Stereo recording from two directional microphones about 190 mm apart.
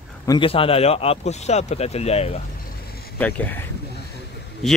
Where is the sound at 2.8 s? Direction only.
55° left (ahead or behind).